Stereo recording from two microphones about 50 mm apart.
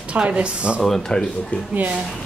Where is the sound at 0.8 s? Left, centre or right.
Centre.